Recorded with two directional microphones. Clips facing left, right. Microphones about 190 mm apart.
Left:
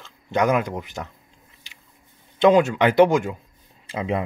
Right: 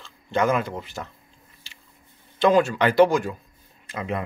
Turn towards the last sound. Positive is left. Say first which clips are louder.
# left 4 dB
turn(degrees=25)  # may be behind; listen again after turning